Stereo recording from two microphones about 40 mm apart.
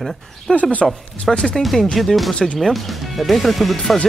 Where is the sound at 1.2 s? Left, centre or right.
Centre.